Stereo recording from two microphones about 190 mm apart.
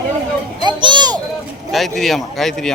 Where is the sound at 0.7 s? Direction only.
25° right (ahead or behind).